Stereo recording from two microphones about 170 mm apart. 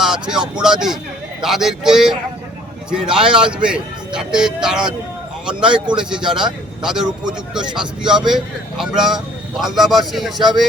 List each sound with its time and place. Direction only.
0.0 s speech: 5° right (ahead or behind)
5.6 s speech: 25° right (ahead or behind)
6.0 s speech: 5° right (ahead or behind)
10.3 s speech: 25° right (ahead or behind)